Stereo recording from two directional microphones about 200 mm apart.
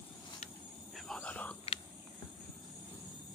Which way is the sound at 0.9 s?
5° left (ahead or behind).